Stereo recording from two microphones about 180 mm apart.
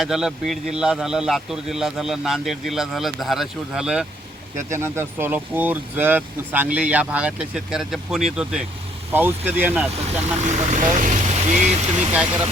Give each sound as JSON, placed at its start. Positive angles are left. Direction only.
{"t": 0.0, "sound": "a man's voice", "side_deg": 0}
{"t": 4.5, "sound": "speech", "side_deg": -15}
{"t": 9.9, "sound": "speech", "side_deg": -40}